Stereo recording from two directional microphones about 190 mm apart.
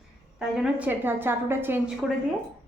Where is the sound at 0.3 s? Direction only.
5° right (ahead or behind).